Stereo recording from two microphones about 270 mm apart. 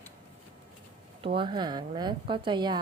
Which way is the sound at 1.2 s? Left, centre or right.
Centre.